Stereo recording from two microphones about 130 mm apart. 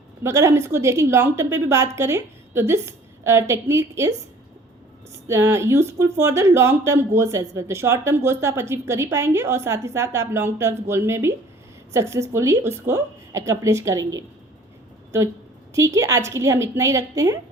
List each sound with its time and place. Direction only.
0.2 s speech: 20° right (ahead or behind)
5.3 s speech: 25° right (ahead or behind)
15.7 s speech: 25° right (ahead or behind)